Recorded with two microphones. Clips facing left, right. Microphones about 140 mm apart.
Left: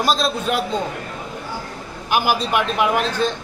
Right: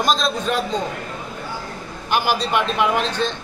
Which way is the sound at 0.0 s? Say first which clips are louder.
Even; 5° left (ahead or behind).